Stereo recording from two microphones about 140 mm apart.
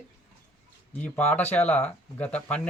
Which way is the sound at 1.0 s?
10° left (ahead or behind).